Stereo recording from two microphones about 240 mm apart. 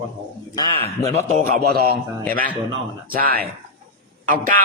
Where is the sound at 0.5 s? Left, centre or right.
Centre.